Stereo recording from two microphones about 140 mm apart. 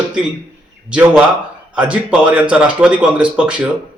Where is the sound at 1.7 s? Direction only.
10° right (ahead or behind).